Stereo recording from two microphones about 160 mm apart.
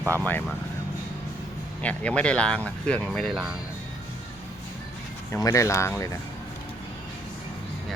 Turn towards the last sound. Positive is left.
turn(degrees=20)  # may be behind; listen again after turning